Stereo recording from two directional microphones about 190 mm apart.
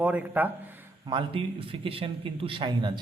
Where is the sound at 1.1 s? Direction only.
25° right (ahead or behind).